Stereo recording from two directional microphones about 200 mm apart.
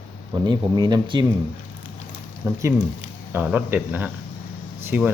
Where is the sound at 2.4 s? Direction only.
15° right (ahead or behind).